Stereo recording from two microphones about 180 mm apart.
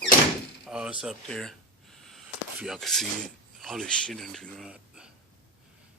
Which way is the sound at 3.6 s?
Centre (ahead or behind).